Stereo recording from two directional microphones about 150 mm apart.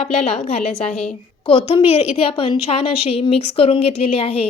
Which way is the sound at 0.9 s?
5° left (ahead or behind).